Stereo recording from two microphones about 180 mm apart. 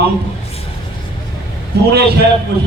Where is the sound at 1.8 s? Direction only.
65° right (ahead or behind).